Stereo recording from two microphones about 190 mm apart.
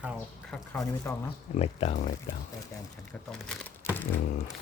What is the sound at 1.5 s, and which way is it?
Speech, 35° left (ahead or behind).